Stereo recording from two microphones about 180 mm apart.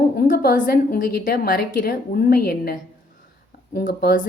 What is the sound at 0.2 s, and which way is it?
A woman's voice, 50° left (ahead or behind).